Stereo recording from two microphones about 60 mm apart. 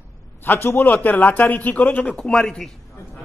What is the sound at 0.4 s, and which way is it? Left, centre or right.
Speech, left.